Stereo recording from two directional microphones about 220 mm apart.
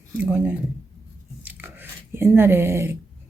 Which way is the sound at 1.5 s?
10° right (ahead or behind).